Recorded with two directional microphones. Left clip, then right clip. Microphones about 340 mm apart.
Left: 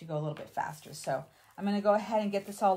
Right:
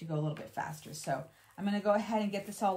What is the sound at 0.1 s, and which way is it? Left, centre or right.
Speech, centre.